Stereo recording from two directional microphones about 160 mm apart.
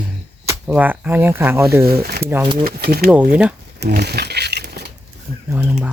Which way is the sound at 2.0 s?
75° right (ahead or behind).